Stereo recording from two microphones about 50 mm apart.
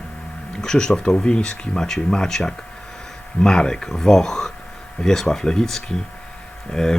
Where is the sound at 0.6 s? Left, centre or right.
Centre.